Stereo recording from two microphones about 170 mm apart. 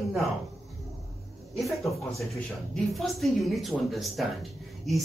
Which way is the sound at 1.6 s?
Centre (ahead or behind).